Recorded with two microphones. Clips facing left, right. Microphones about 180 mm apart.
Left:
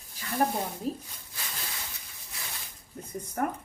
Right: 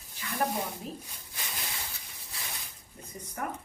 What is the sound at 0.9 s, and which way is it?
Speech, 35° left (ahead or behind).